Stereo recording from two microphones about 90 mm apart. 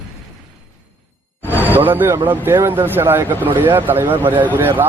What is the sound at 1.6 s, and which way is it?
Speech, 20° right (ahead or behind).